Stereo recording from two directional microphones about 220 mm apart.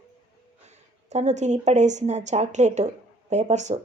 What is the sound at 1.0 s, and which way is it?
Speech, 30° right (ahead or behind).